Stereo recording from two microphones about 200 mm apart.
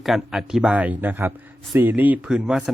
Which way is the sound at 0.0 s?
Centre (ahead or behind).